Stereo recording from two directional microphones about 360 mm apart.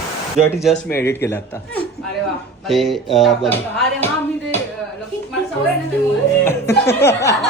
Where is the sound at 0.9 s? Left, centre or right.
Centre.